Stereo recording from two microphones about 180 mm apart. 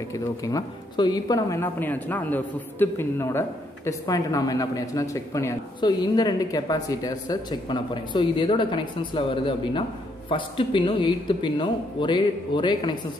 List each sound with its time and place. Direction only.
0.1 s speech: 20° left (ahead or behind)